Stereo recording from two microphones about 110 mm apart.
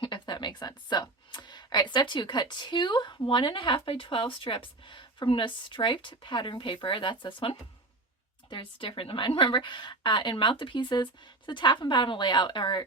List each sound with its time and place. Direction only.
0.0 s speech: 45° left (ahead or behind)